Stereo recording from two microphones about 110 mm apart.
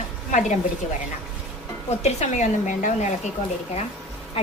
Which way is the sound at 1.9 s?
90° left.